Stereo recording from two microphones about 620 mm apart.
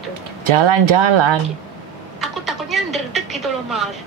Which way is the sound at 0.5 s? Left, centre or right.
Right.